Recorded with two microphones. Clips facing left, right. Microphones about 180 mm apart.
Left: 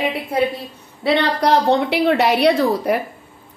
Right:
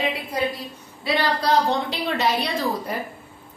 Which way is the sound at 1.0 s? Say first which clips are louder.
Left 6 dB; 70° left (ahead or behind).